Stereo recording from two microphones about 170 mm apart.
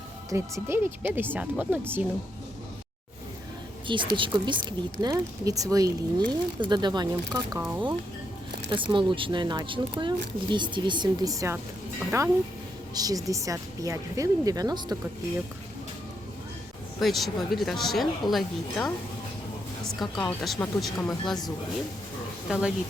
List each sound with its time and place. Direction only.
0.3 s speech: 15° right (ahead or behind)
3.8 s speech: 30° right (ahead or behind)
8.7 s speech: 30° right (ahead or behind)
17.0 s speech: centre (ahead or behind)
20.0 s speech: centre (ahead or behind)
22.4 s speech: centre (ahead or behind)